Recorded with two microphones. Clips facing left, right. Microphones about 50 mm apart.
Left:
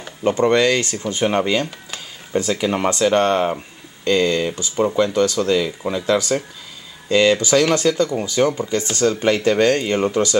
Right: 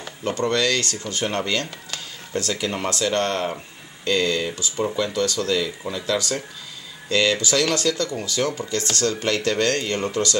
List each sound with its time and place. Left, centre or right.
0.2 s speech: left; by 4.6 s centre
4.7 s speech: left
5.0 s speech: centre